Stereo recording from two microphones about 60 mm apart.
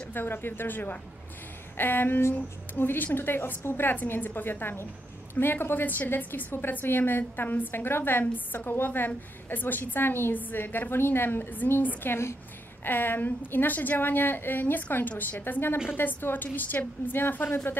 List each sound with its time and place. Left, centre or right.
0.1 s a woman's voice: left